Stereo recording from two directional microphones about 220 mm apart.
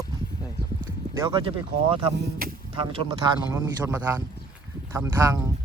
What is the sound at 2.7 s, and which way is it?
Speech, 25° right (ahead or behind).